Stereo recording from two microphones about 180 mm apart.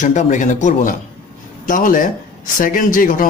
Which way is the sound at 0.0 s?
45° left (ahead or behind).